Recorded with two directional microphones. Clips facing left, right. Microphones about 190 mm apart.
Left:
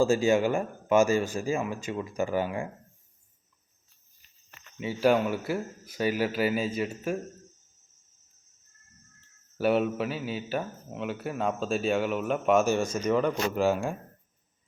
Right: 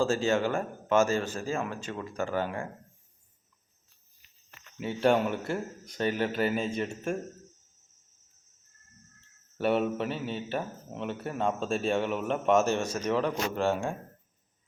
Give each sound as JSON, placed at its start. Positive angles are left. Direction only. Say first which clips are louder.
{"t": 0.0, "sound": "a man's voice", "louder": "left 3 dB", "side_deg": 10}
{"t": 4.8, "sound": "speech", "louder": "left 1 dB", "side_deg": 0}
{"t": 9.6, "sound": "speech", "louder": "left 2 dB", "side_deg": 5}